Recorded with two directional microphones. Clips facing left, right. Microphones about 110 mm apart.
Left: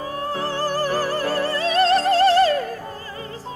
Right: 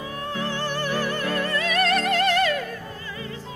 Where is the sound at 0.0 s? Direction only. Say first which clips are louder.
Left 4 dB; 35° left (ahead or behind).